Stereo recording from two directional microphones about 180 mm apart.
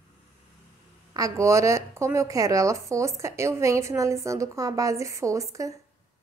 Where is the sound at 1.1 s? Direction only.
20° right (ahead or behind).